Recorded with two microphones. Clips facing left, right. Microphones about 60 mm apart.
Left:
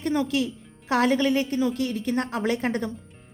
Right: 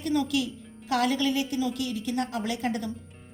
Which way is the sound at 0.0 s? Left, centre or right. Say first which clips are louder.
Left 2 dB; left.